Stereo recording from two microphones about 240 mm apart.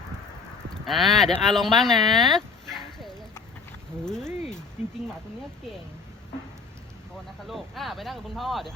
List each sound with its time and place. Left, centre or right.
0.7 s speech: centre
2.3 s bow-wow: centre
4.0 s speech: centre
7.4 s speech: centre